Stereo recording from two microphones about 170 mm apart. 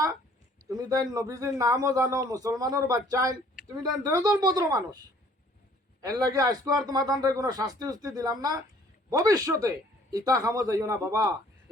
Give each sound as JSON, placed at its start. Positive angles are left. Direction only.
{"t": 0.7, "sound": "a man's voice", "side_deg": -20}
{"t": 6.0, "sound": "a man's voice", "side_deg": -20}